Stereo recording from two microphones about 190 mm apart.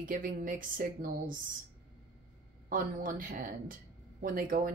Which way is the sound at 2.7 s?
45° right (ahead or behind).